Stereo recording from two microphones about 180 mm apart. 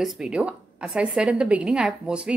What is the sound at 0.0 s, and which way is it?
A woman's voice, 5° right (ahead or behind).